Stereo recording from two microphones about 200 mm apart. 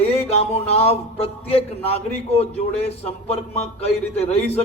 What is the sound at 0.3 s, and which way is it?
A man's voice, 30° left (ahead or behind).